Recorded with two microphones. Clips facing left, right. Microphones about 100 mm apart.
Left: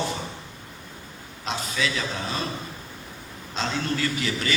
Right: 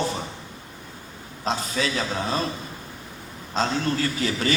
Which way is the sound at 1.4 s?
35° right (ahead or behind).